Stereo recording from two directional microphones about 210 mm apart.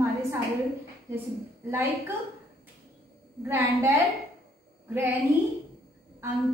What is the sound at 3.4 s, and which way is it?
Speech, 10° right (ahead or behind).